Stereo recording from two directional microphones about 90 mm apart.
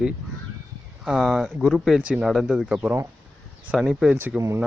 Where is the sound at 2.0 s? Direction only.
10° right (ahead or behind).